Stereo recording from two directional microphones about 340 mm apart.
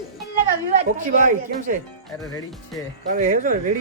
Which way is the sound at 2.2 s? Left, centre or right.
Centre.